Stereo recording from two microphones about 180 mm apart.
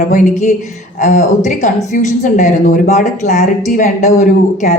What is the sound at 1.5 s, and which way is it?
A woman's voice, 45° left (ahead or behind).